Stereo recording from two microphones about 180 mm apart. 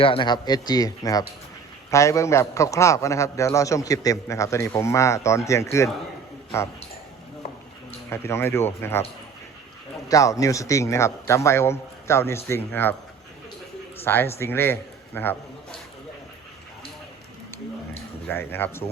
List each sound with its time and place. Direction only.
0.0 s a man's voice: 30° left (ahead or behind)
8.1 s a man's voice: 15° left (ahead or behind)
10.1 s a man's voice: 20° left (ahead or behind)
14.0 s a man's voice: 10° left (ahead or behind)
18.3 s a man's voice: 10° left (ahead or behind)